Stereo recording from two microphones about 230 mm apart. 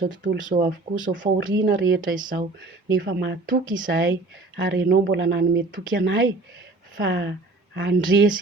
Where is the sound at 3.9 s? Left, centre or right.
Right.